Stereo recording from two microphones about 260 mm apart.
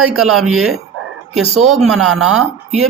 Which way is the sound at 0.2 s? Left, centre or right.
Centre.